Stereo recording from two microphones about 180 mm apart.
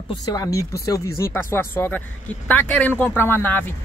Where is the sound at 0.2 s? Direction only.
20° left (ahead or behind).